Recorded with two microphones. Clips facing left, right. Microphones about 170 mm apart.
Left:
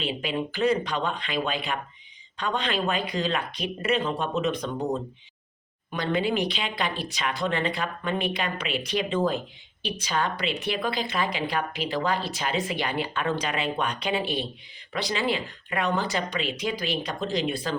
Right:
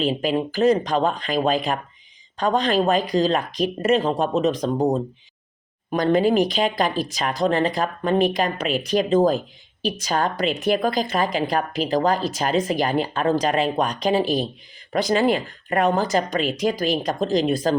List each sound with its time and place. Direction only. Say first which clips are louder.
0.0 s a woman's voice: right 7 dB; 40° right (ahead or behind)